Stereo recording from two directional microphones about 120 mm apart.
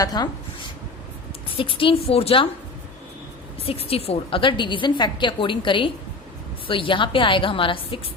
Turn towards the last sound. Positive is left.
turn(degrees=45)  # may be behind; listen again after turning